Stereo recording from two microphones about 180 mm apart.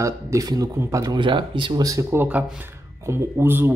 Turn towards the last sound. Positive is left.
turn(degrees=-10)  # may be behind; listen again after turning